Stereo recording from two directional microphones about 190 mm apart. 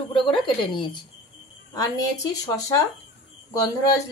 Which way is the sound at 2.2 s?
15° left (ahead or behind).